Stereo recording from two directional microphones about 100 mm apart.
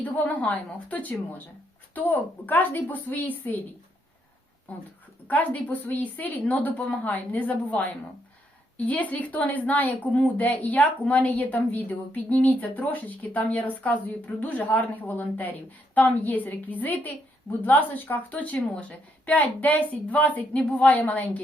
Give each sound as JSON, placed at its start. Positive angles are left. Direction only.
{"t": 0.0, "sound": "speech", "side_deg": 15}
{"t": 4.7, "sound": "speech", "side_deg": 15}
{"t": 8.9, "sound": "speech", "side_deg": 15}